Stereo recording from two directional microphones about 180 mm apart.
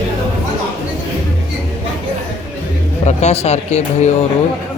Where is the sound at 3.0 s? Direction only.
40° left (ahead or behind).